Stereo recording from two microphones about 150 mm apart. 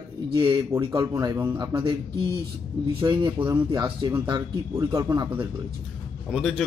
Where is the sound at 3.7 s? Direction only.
30° right (ahead or behind).